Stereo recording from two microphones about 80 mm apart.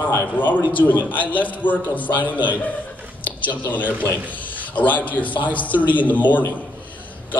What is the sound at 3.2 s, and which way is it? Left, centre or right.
Speech, left.